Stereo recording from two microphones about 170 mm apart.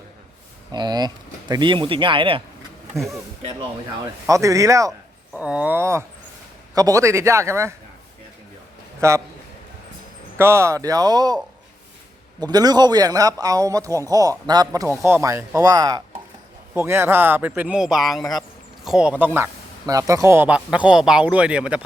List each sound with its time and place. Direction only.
0.7 s speech: 25° right (ahead or behind)
2.9 s speech: centre (ahead or behind)
4.0 s speech: 20° right (ahead or behind)
4.9 s speech: 5° right (ahead or behind)
9.0 s a man's voice: 15° right (ahead or behind)
10.3 s speech: 15° right (ahead or behind)
12.4 s speech: 25° right (ahead or behind); by 21.8 s 5° right (ahead or behind)